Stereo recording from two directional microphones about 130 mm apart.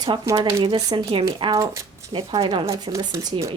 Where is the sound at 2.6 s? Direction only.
25° right (ahead or behind).